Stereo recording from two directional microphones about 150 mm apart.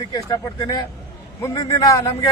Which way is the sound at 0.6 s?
25° left (ahead or behind).